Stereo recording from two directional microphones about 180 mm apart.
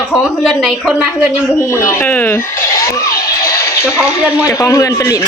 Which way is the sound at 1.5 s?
15° left (ahead or behind).